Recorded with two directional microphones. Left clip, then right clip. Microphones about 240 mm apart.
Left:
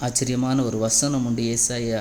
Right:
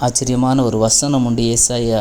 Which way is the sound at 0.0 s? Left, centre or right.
Centre.